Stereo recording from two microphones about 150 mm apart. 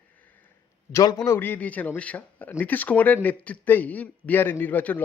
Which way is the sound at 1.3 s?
10° left (ahead or behind).